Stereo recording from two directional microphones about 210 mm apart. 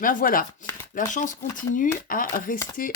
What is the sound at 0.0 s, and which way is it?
Speech, 40° left (ahead or behind).